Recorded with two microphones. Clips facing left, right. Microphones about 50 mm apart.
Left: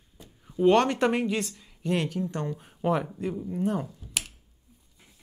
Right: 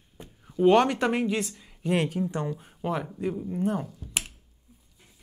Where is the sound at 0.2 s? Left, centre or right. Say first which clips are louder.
Right 5 dB; right.